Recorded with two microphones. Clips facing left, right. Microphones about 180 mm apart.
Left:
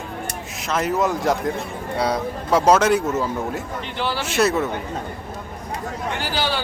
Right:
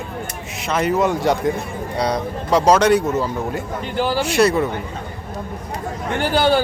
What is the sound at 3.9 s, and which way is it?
Speech, 45° right (ahead or behind).